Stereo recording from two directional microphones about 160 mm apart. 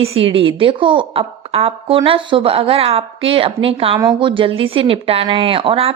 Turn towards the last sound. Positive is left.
turn(degrees=-35)  # may be behind; listen again after turning